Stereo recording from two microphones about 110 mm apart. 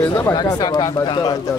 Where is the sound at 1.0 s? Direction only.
45° left (ahead or behind).